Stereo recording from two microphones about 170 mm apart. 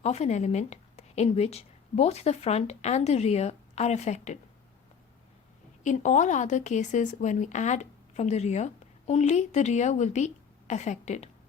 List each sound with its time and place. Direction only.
0.0 s a woman's voice: 40° left (ahead or behind)
5.8 s speech: 45° left (ahead or behind)